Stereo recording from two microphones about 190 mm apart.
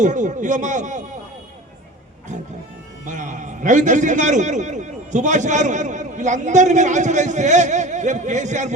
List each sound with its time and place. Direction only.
0.0 s a man's voice: 40° right (ahead or behind)
3.1 s a man's voice: 40° right (ahead or behind)